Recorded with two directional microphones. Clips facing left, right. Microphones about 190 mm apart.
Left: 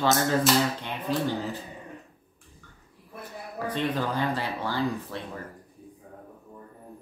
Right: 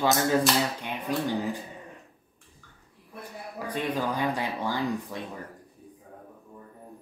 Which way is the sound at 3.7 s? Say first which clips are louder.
Left 1 dB; 10° right (ahead or behind).